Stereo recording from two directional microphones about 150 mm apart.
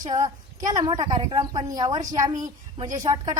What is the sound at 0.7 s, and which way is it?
A woman's voice, 25° right (ahead or behind).